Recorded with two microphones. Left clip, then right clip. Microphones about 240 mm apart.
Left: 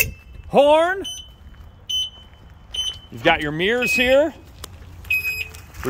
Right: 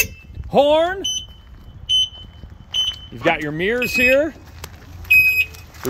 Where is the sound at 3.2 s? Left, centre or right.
Centre.